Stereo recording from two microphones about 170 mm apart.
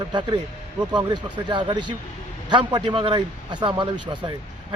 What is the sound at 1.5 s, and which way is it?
A man's voice, 30° right (ahead or behind).